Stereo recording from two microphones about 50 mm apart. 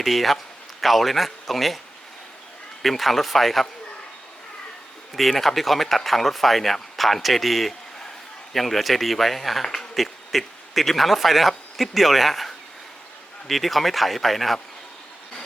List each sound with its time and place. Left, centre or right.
0.0 s speech: centre
2.8 s speech: centre
5.1 s a man's voice: centre